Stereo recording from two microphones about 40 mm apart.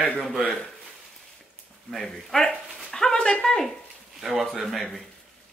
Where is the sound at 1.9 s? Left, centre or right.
Centre.